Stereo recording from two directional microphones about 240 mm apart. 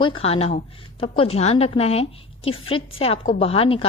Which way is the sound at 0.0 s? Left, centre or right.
Left.